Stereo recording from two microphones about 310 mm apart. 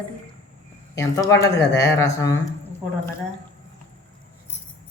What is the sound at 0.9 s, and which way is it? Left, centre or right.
Speech, centre.